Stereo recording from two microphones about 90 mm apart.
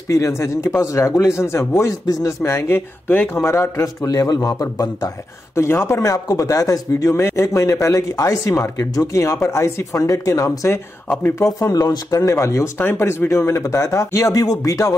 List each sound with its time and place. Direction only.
0.1 s a man's voice: 30° left (ahead or behind)
3.4 s a man's voice: 35° left (ahead or behind)
11.1 s speech: 25° left (ahead or behind)
11.4 s a man's voice: 40° left (ahead or behind)